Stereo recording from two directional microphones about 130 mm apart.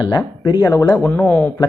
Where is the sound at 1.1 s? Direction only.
15° left (ahead or behind).